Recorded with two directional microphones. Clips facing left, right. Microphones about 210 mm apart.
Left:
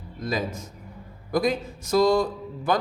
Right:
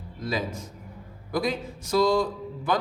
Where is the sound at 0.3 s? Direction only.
45° left (ahead or behind).